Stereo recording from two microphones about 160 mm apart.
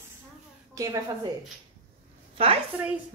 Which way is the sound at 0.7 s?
20° right (ahead or behind).